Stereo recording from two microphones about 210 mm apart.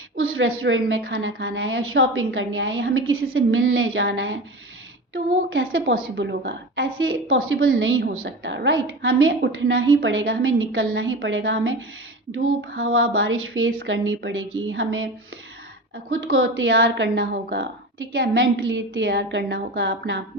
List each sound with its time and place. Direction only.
0.2 s a woman's voice: 75° right (ahead or behind); by 6.8 s 55° right (ahead or behind)
7.0 s a woman's voice: 70° right (ahead or behind)
8.0 s a woman's voice: 55° right (ahead or behind)
16.0 s a woman's voice: 70° right (ahead or behind)